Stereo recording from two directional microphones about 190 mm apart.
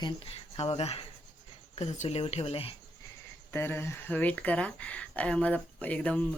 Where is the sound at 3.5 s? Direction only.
10° left (ahead or behind).